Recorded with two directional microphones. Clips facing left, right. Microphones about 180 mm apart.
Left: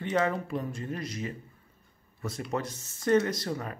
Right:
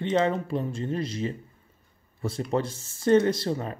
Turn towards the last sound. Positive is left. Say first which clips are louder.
# right 6 dB
turn(degrees=-25)  # may be behind; listen again after turning